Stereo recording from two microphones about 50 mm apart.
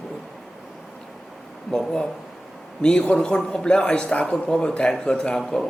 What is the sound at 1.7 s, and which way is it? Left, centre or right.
A man's voice, centre.